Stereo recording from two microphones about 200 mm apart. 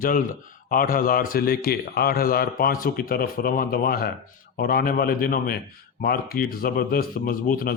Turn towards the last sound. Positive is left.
turn(degrees=45)  # may be behind; listen again after turning